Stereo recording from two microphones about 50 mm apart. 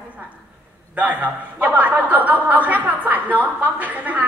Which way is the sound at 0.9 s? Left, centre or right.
Right.